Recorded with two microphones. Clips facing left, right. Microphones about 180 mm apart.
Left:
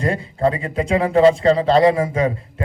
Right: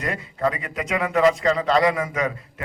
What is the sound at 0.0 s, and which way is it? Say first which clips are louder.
A man's voice: left 5 dB; 30° left (ahead or behind).